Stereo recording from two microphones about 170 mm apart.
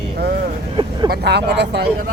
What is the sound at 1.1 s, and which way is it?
Speech, 75° right (ahead or behind).